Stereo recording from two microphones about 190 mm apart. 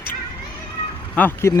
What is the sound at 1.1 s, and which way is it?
Speech, 10° left (ahead or behind).